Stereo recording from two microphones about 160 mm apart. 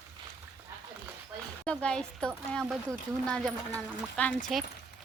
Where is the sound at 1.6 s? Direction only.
5° left (ahead or behind).